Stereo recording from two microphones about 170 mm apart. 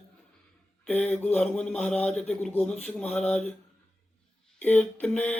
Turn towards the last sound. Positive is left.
turn(degrees=10)  # may be behind; listen again after turning